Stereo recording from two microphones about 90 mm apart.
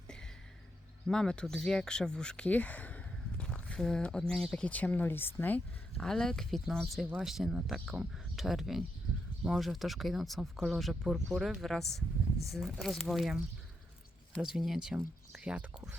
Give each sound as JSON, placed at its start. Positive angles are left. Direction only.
{"t": 1.0, "sound": "speech", "side_deg": 5}
{"t": 4.6, "sound": "speech", "side_deg": 20}
{"t": 6.0, "sound": "speech", "side_deg": 5}
{"t": 14.4, "sound": "speech", "side_deg": -5}